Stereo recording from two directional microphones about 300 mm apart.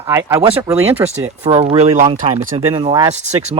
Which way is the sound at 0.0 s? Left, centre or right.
Centre.